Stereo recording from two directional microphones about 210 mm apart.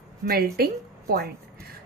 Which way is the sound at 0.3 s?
45° right (ahead or behind).